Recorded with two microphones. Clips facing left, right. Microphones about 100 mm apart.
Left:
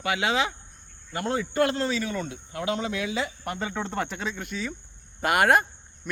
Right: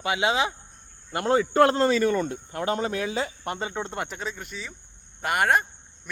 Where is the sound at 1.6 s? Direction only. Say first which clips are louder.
Right 5 dB; 45° right (ahead or behind).